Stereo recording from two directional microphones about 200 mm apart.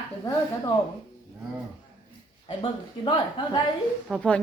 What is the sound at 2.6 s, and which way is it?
A woman's voice, 25° left (ahead or behind).